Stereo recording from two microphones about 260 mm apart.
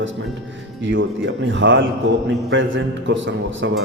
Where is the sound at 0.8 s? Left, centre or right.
Right.